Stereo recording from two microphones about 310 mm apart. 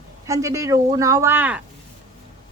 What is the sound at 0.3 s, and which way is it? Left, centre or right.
A woman's voice, centre.